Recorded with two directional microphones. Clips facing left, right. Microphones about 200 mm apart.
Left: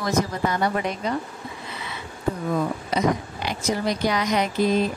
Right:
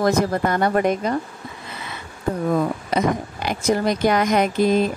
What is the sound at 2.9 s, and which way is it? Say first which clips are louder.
A woman's voice: right 1 dB; 50° right (ahead or behind).